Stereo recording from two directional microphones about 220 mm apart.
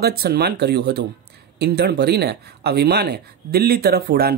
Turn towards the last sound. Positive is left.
turn(degrees=-45)  # may be behind; listen again after turning